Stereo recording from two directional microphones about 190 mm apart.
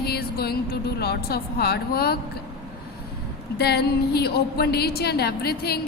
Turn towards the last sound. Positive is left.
turn(degrees=55)  # may be behind; listen again after turning